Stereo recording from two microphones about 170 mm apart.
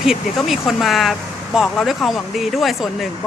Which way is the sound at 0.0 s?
Centre (ahead or behind).